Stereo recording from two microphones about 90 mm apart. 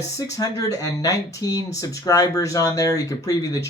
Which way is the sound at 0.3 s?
40° left (ahead or behind).